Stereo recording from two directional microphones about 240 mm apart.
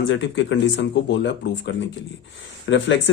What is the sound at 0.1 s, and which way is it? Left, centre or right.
Speech, left.